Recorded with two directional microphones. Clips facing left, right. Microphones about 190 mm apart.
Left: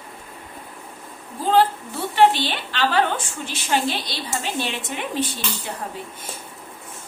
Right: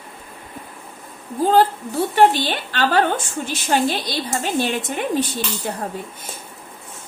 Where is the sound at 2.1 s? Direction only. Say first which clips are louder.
Right 1 dB; 45° right (ahead or behind).